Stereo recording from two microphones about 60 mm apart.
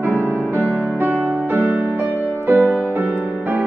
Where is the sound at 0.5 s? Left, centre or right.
Right.